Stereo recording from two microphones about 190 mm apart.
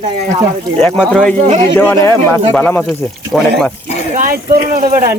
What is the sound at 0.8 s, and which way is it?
Speech, centre (ahead or behind).